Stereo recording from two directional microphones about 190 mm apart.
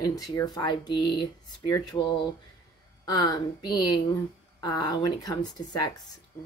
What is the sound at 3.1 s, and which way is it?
Speech, 20° left (ahead or behind).